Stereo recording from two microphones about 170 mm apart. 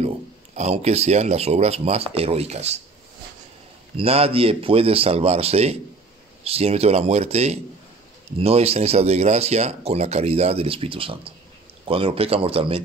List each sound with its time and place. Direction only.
0.6 s speech: 40° right (ahead or behind)
3.9 s speech: 35° right (ahead or behind)